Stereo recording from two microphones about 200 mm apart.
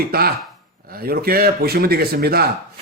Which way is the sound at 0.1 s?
50° right (ahead or behind).